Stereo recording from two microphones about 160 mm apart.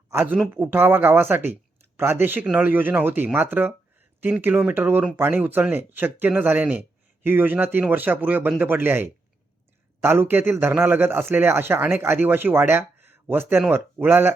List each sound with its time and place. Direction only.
0.1 s speech: 15° right (ahead or behind)